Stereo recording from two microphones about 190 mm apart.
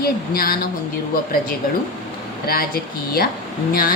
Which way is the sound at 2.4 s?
50° left (ahead or behind).